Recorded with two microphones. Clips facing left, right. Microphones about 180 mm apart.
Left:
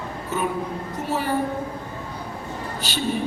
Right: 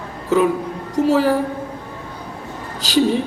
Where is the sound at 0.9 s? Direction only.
90° right.